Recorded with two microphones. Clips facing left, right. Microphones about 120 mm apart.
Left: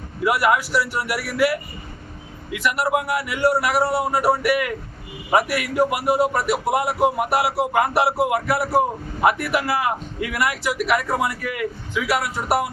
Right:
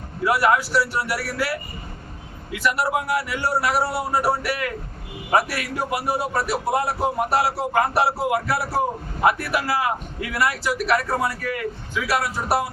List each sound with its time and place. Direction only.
0.3 s speech: 15° left (ahead or behind)
2.6 s speech: 15° left (ahead or behind)